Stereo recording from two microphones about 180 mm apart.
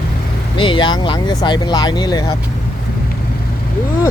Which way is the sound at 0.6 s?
25° left (ahead or behind).